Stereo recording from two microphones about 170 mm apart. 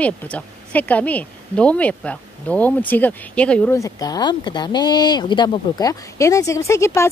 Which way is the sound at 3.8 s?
20° left (ahead or behind).